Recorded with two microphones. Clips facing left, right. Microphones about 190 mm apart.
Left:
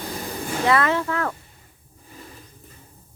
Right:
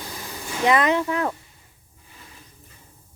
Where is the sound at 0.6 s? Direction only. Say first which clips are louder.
Right 2 dB; 20° right (ahead or behind).